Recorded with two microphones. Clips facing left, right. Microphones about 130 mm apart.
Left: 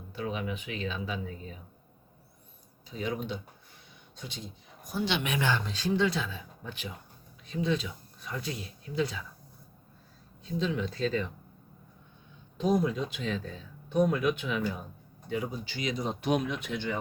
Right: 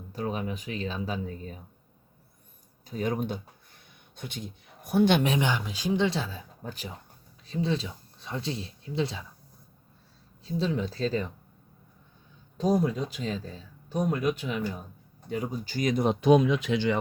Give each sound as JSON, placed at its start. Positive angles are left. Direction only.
{"t": 0.1, "sound": "speech", "side_deg": -40}
{"t": 2.8, "sound": "speech", "side_deg": -50}
{"t": 5.4, "sound": "speech", "side_deg": -10}
{"t": 6.1, "sound": "speech", "side_deg": -35}
{"t": 10.4, "sound": "speech", "side_deg": -35}
{"t": 12.5, "sound": "speech", "side_deg": -35}
{"t": 16.6, "sound": "speech", "side_deg": -90}